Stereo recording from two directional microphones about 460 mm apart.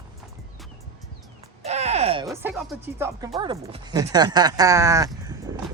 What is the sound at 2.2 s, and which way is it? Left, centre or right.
Speech, centre.